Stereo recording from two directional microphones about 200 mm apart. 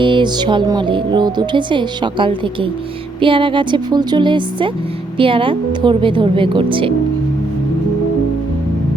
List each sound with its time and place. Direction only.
0.0 s speech: 25° right (ahead or behind)